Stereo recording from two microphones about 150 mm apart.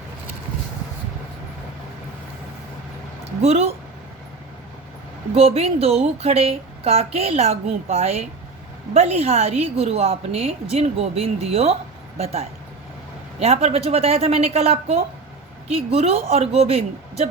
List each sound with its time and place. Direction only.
3.4 s a woman's voice: 45° right (ahead or behind)
5.3 s a woman's voice: 40° right (ahead or behind)